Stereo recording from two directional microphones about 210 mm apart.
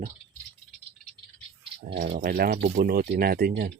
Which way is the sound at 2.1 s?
40° right (ahead or behind).